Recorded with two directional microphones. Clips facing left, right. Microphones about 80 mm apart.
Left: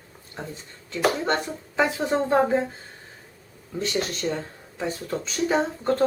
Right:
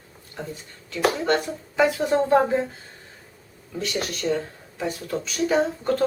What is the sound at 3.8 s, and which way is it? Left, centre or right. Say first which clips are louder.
Speech: left 1 dB; left.